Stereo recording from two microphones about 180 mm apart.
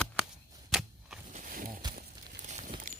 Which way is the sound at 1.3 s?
45° right (ahead or behind).